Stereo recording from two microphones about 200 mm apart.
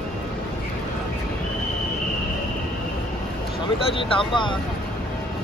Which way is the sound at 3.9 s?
25° left (ahead or behind).